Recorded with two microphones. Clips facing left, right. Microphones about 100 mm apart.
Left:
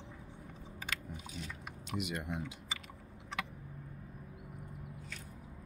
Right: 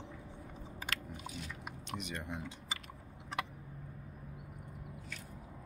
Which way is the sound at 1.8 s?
5° left (ahead or behind).